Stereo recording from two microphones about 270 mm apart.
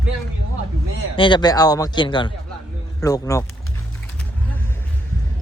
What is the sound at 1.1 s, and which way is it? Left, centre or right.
A man's voice, centre.